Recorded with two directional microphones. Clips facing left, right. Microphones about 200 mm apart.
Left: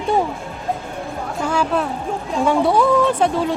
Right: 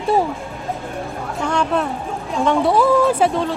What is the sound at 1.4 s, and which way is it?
Speech, 5° left (ahead or behind).